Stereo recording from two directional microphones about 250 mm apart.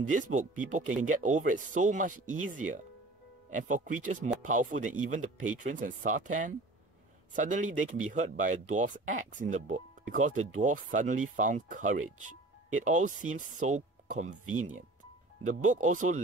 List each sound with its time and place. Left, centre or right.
0.1 s speech: right
2.2 s speech: right
2.5 s speech: right
14.4 s speech: right
15.4 s speech: right